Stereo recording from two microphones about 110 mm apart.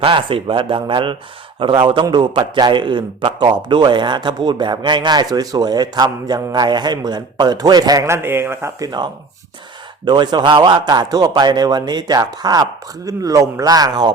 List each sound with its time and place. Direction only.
0.0 s a man's voice: 50° right (ahead or behind)
8.0 s a man's voice: 25° right (ahead or behind)
8.8 s a man's voice: 40° right (ahead or behind)
10.1 s a man's voice: 40° right (ahead or behind)